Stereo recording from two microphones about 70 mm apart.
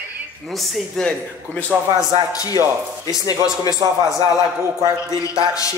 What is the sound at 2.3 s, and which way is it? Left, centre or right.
Speech, left.